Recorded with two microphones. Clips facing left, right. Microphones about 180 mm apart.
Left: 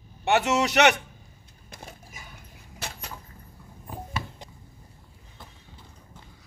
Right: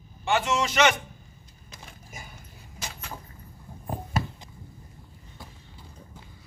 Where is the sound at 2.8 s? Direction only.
60° left (ahead or behind).